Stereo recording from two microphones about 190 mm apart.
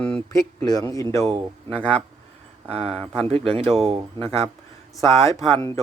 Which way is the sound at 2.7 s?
30° right (ahead or behind).